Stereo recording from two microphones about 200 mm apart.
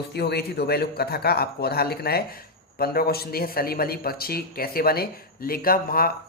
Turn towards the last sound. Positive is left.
turn(degrees=45)  # may be behind; listen again after turning